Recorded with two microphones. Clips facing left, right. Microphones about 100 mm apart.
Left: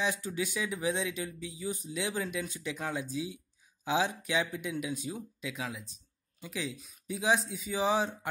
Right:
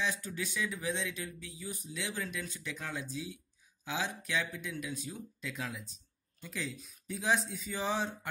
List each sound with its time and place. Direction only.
0.0 s speech: 15° left (ahead or behind)
5.4 s speech: 5° left (ahead or behind)